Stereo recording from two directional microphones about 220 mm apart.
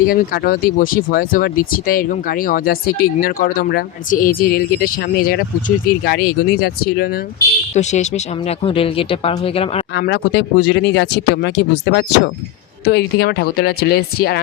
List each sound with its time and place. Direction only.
0.1 s speech: 40° left (ahead or behind)
7.7 s speech: 30° left (ahead or behind)
9.9 s speech: 50° left (ahead or behind)